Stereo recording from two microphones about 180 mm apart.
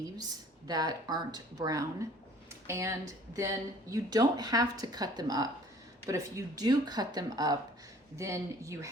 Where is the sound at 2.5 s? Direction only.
15° right (ahead or behind).